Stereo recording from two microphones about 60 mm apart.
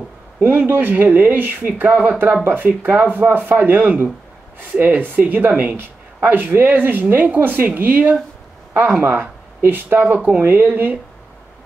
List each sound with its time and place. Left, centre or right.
0.4 s speech: right
10.1 s speech: right
10.4 s speech: right